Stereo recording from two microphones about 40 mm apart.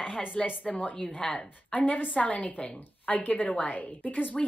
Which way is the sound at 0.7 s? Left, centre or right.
Left.